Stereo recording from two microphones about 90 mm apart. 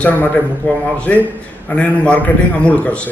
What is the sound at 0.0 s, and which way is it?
A man's voice, 15° left (ahead or behind).